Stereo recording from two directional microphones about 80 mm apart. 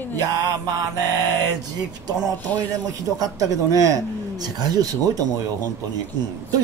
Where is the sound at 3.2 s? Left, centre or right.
Right.